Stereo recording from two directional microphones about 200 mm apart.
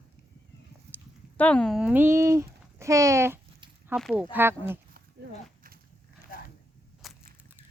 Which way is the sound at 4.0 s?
Centre (ahead or behind).